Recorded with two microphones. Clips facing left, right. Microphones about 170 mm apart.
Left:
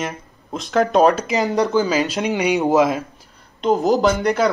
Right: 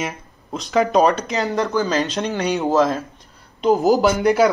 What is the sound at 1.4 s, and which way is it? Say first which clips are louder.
Speech: left 3 dB; 15° left (ahead or behind).